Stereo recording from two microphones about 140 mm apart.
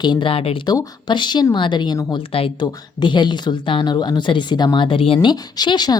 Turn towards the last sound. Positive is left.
turn(degrees=30)  # may be behind; listen again after turning